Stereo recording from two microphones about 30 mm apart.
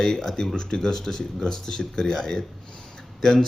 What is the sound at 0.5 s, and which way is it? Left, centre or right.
Speech, left.